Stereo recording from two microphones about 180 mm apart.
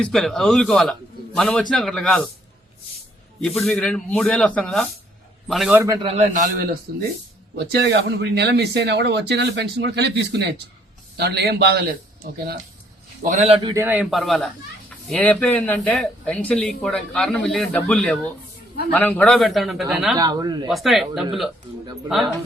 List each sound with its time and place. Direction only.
0.0 s speech: centre (ahead or behind)
3.4 s speech: centre (ahead or behind)
5.7 s a man's voice: 15° right (ahead or behind)
6.0 s a man's voice: 35° right (ahead or behind); by 6.7 s 50° right (ahead or behind)
7.5 s a man's voice: 65° right (ahead or behind)
13.2 s a man's voice: 40° right (ahead or behind)
13.6 s speech: 25° right (ahead or behind)
13.8 s speech: 5° right (ahead or behind)
20.1 s speech: 20° right (ahead or behind)
20.7 s speech: centre (ahead or behind)